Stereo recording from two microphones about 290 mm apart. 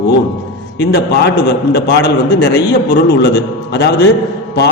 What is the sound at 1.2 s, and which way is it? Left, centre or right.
A man's voice, left.